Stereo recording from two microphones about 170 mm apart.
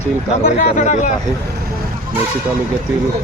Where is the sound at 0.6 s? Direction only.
45° left (ahead or behind).